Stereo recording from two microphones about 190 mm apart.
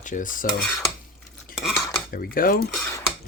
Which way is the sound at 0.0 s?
45° left (ahead or behind).